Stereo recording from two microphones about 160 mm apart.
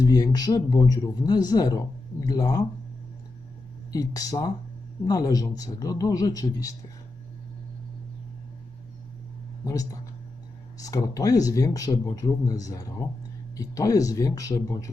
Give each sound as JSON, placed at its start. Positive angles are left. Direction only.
{"t": 0.0, "sound": "speech", "side_deg": 25}
{"t": 3.9, "sound": "speech", "side_deg": 25}
{"t": 9.6, "sound": "speech", "side_deg": 20}